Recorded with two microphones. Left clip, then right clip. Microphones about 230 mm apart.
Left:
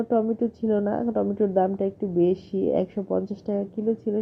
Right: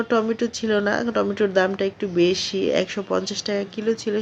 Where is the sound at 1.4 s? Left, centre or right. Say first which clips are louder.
Right 2 dB; right.